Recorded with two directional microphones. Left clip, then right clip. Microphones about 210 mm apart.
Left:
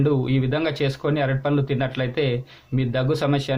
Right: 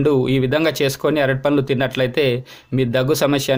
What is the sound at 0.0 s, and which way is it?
Speech, 55° right (ahead or behind).